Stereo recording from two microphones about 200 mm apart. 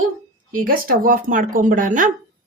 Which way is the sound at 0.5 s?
45° right (ahead or behind).